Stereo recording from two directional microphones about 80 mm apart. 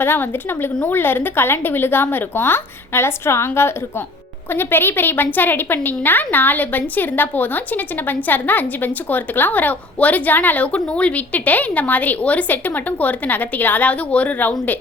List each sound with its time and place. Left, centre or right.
0.0 s a woman's voice: left